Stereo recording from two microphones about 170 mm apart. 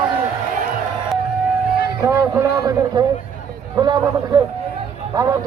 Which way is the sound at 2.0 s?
15° right (ahead or behind).